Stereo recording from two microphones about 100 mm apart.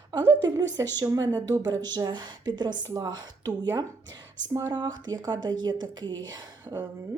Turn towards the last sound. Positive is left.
turn(degrees=-40)  # may be behind; listen again after turning